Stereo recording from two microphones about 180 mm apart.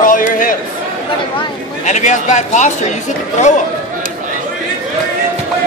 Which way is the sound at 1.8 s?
40° left (ahead or behind).